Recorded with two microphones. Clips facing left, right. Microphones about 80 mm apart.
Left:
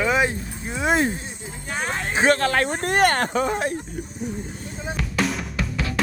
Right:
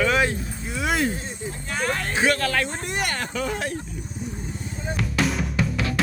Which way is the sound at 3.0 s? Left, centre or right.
Left.